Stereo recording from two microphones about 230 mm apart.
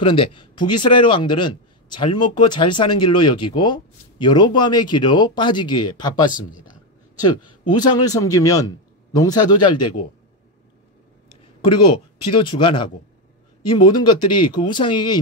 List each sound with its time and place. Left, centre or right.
0.0 s a man's voice: left
11.6 s speech: left